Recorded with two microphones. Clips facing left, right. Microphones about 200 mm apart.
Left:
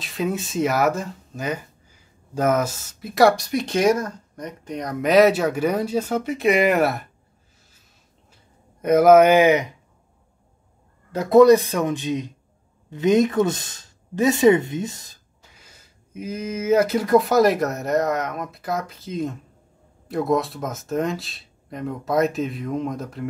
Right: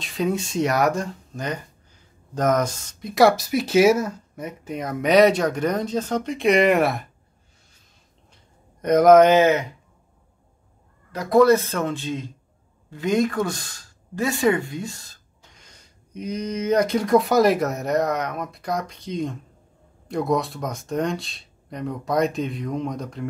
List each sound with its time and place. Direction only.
0.0 s speech: centre (ahead or behind)
8.8 s speech: 5° left (ahead or behind)
11.1 s speech: 25° left (ahead or behind)
15.4 s speech: 5° left (ahead or behind)